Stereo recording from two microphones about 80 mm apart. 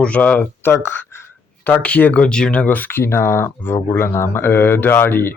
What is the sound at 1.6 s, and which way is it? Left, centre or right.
Speech, left.